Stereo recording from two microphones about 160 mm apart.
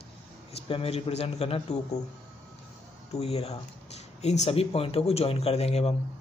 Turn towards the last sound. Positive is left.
turn(degrees=40)  # may be behind; listen again after turning